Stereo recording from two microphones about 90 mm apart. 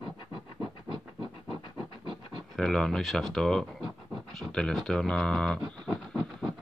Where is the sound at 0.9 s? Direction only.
70° left (ahead or behind).